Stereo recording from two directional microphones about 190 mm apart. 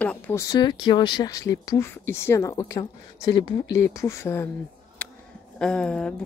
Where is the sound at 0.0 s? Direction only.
10° left (ahead or behind).